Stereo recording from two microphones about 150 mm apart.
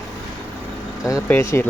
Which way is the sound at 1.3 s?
15° left (ahead or behind).